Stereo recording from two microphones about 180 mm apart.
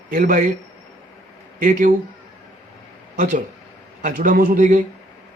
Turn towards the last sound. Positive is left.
turn(degrees=-45)  # may be behind; listen again after turning